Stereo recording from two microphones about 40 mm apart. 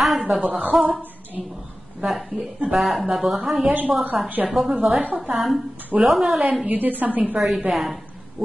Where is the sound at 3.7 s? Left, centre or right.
Right.